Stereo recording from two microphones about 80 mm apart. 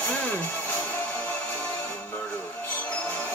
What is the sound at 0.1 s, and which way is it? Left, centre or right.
Music, centre.